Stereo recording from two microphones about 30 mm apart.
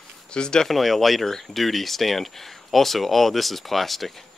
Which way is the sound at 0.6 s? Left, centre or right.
Centre.